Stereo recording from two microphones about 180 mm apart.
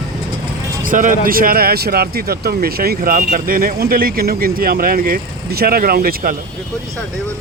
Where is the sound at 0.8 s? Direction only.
50° right (ahead or behind).